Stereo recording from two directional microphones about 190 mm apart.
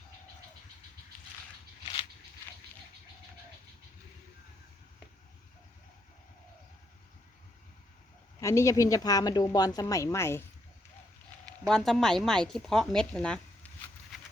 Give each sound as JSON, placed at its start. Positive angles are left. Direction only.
{"t": 1.8, "sound": "a sound", "side_deg": 25}
{"t": 8.4, "sound": "speech", "side_deg": 15}
{"t": 11.6, "sound": "speech", "side_deg": 0}